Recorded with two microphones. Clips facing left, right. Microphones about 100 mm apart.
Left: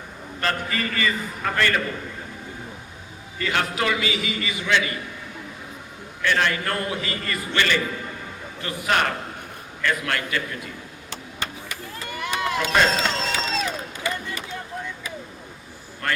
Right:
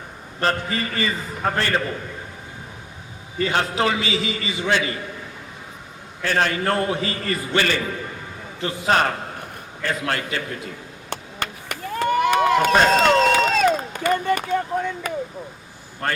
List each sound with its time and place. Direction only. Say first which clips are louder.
0.3 s a man's voice: right 3 dB; 30° right (ahead or behind)
3.3 s a man's voice: right 3 dB; 25° right (ahead or behind)
6.2 s a man's voice: right 2 dB; 35° right (ahead or behind)
11.1 s run: right 4 dB; 55° right (ahead or behind)
16.0 s a man's voice: right 1 dB; 30° right (ahead or behind)